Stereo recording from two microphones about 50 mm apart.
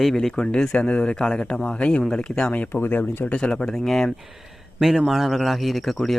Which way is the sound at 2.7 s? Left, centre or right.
Left.